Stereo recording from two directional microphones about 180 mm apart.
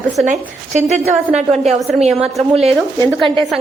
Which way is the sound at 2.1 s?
Centre (ahead or behind).